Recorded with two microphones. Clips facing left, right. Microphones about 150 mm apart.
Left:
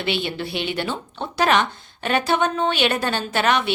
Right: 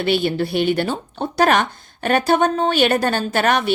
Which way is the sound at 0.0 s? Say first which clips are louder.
Right 6 dB; 45° right (ahead or behind).